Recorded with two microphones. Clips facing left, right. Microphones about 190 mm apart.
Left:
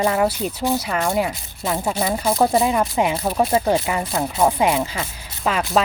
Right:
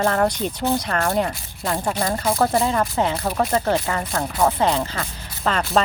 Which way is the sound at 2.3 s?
15° left (ahead or behind).